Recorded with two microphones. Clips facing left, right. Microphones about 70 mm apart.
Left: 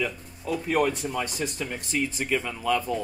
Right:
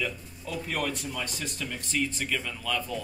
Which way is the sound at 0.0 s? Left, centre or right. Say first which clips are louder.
Left 4 dB; centre.